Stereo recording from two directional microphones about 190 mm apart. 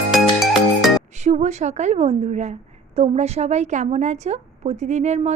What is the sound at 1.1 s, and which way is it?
A woman's voice, 35° right (ahead or behind).